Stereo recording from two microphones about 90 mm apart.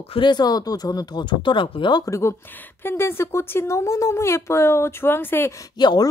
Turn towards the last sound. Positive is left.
turn(degrees=50)  # may be behind; listen again after turning